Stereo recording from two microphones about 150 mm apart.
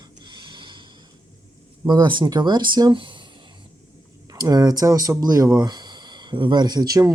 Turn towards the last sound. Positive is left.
turn(degrees=-25)  # may be behind; listen again after turning